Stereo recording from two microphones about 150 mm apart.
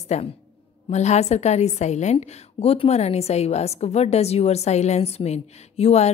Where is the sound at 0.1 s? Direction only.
50° left (ahead or behind).